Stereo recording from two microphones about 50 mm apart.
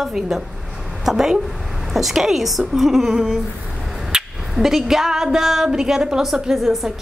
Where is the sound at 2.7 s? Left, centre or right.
Centre.